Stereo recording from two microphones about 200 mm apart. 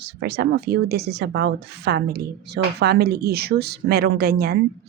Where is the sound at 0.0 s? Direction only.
55° right (ahead or behind).